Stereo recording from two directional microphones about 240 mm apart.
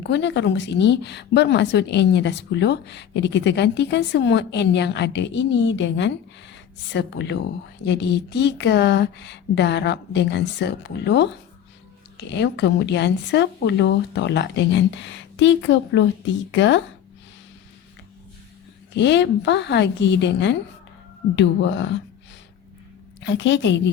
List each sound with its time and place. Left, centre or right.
0.0 s a woman's voice: left
18.9 s a woman's voice: left
23.2 s a woman's voice: left